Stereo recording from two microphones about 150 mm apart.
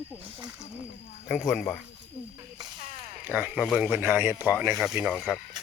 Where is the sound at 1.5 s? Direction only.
Centre (ahead or behind).